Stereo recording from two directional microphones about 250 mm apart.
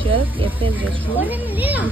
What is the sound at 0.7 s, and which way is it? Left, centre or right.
Speech, centre.